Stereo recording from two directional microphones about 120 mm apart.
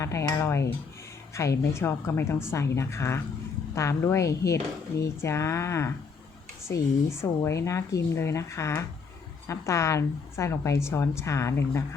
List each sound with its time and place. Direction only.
0.0 s speech: 25° left (ahead or behind)